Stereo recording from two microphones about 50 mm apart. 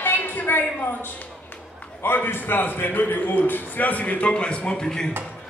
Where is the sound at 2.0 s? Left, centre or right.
Left.